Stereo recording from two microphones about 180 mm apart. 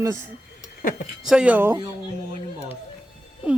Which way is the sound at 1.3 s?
5° right (ahead or behind).